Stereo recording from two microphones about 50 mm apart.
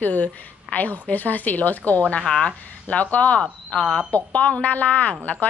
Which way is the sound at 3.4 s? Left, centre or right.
Centre.